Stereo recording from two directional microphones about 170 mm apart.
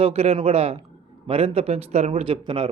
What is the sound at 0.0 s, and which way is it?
Speech, 35° right (ahead or behind).